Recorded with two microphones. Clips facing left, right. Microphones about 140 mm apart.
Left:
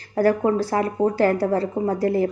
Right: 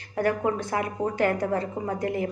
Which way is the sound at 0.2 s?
35° left (ahead or behind).